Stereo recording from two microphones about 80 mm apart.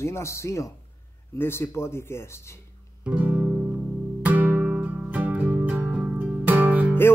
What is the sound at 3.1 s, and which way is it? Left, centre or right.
Music, right.